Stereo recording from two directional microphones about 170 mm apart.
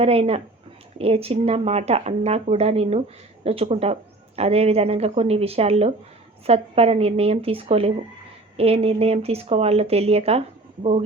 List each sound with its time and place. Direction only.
0.0 s speech: 35° right (ahead or behind)